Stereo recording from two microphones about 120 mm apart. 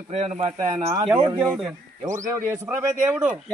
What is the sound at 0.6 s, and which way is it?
Speech, 30° right (ahead or behind).